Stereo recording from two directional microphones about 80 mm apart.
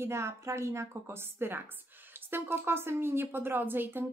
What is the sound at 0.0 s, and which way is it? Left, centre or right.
A woman's voice, right.